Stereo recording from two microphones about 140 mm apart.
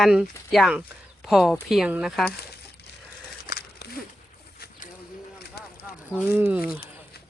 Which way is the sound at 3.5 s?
90° left.